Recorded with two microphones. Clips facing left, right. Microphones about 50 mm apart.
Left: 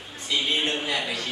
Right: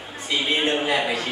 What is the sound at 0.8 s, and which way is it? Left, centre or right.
Speech, right.